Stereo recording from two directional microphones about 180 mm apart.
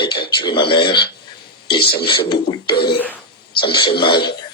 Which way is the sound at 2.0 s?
25° left (ahead or behind).